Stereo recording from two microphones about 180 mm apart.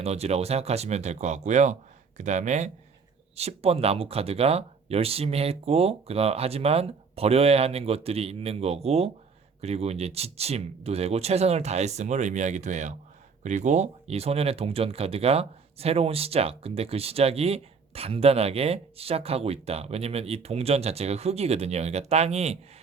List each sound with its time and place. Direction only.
0.0 s speech: 35° right (ahead or behind)